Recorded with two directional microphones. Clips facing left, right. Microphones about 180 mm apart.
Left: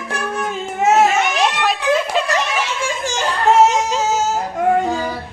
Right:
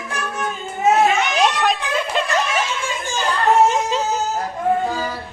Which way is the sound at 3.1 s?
90° left.